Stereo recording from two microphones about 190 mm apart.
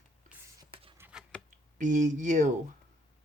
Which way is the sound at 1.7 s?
40° right (ahead or behind).